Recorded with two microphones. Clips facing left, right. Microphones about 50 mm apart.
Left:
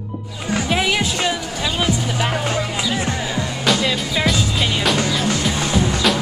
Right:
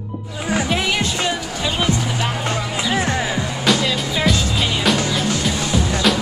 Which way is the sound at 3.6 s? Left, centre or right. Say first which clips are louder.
Even; centre.